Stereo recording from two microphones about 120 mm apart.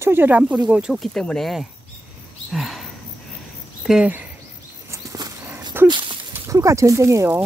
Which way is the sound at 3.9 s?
10° right (ahead or behind).